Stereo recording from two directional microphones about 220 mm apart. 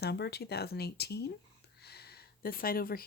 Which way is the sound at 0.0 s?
45° left (ahead or behind).